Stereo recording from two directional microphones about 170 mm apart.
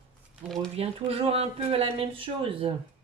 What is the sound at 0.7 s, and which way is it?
Speech, 35° right (ahead or behind).